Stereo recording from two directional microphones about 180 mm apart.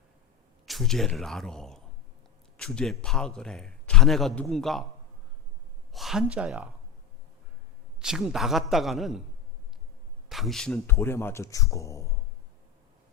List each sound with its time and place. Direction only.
0.6 s a man's voice: centre (ahead or behind)
5.9 s speech: centre (ahead or behind)
8.0 s a man's voice: centre (ahead or behind)
10.2 s speech: centre (ahead or behind)
10.9 s a man's voice: 15° left (ahead or behind)